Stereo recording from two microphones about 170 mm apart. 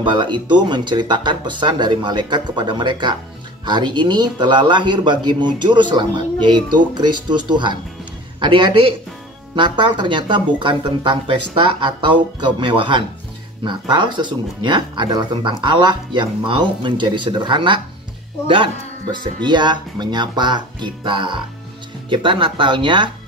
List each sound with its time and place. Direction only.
0.0 s speech: 30° right (ahead or behind)
19.4 s speech: 25° right (ahead or behind)